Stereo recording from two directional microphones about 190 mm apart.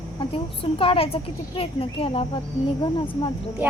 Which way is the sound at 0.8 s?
30° left (ahead or behind).